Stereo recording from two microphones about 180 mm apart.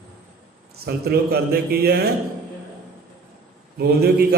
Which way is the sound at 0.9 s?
60° right (ahead or behind).